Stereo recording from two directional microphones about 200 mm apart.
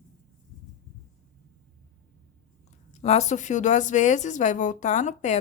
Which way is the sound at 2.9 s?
35° left (ahead or behind).